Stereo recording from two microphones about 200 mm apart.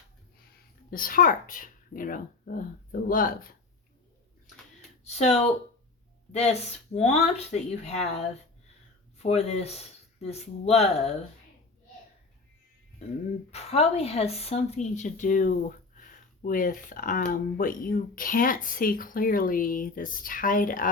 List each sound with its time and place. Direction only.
0.9 s speech: 45° left (ahead or behind)
5.0 s speech: 35° left (ahead or behind)
13.5 s speech: 30° left (ahead or behind)